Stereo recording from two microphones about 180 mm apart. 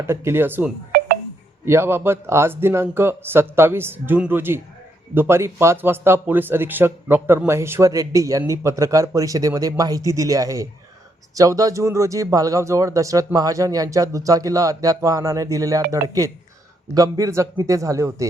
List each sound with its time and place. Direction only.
0.0 s speech: 15° right (ahead or behind)